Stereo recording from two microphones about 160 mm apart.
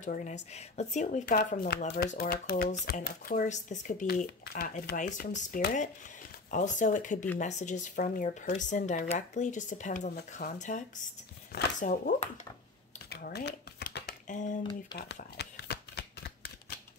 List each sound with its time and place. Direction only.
0.0 s speech: 50° left (ahead or behind)
1.2 s speech: 65° left (ahead or behind)
2.8 s speech: 60° left (ahead or behind)
4.9 s speech: 55° left (ahead or behind)
10.4 s speech: 70° left (ahead or behind)
11.8 s speech: 50° left (ahead or behind)
13.1 s a sound: 80° left; by 14.5 s 50° left (ahead or behind)
15.3 s shuffling cards: 90° left